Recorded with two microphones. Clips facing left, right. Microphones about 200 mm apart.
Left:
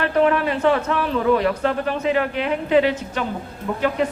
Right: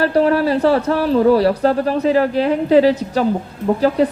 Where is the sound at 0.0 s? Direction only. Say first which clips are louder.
Right 4 dB; 35° right (ahead or behind).